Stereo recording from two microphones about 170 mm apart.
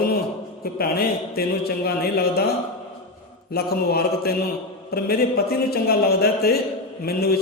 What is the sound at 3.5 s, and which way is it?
A man's voice, 65° left (ahead or behind).